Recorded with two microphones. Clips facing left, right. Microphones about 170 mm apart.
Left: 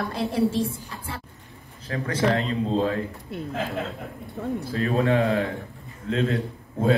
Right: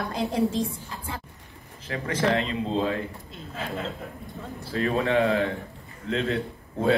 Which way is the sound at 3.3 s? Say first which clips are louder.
Left 10 dB; 65° left (ahead or behind).